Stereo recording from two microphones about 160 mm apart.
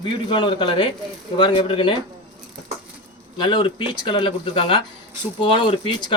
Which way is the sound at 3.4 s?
30° left (ahead or behind).